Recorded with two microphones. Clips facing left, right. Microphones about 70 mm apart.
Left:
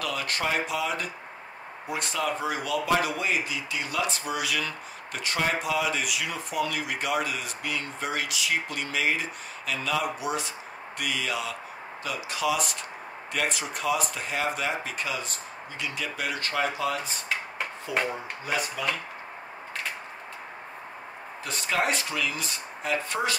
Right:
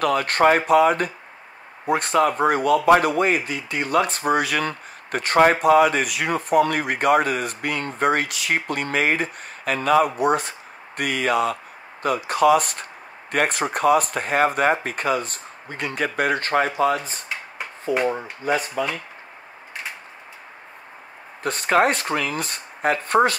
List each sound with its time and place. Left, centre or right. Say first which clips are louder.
0.0 s speech: right 12 dB; right
21.4 s speech: right 9 dB; right